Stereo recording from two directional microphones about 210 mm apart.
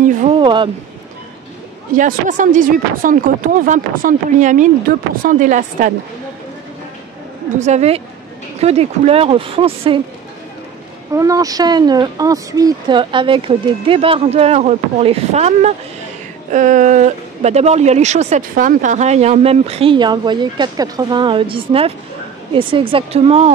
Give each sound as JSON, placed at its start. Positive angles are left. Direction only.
{"t": 0.4, "sound": "a sound", "side_deg": -20}
{"t": 2.0, "sound": "speech", "side_deg": -40}
{"t": 7.5, "sound": "speech", "side_deg": -35}
{"t": 11.1, "sound": "speech", "side_deg": -15}